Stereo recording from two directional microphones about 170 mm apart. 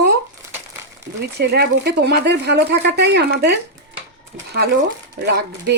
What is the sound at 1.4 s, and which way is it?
A woman's voice, 70° right (ahead or behind).